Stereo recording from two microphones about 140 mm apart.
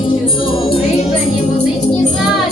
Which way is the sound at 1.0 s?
50° left (ahead or behind).